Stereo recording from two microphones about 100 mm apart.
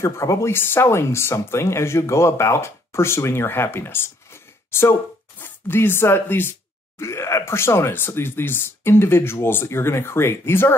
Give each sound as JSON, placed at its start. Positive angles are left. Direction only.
{"t": 0.0, "sound": "speech", "side_deg": 30}